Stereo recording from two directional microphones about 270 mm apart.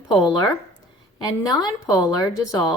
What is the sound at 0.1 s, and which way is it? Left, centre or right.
Speech, centre.